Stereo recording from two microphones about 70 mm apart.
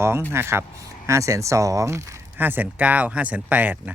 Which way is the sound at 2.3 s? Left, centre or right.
Right.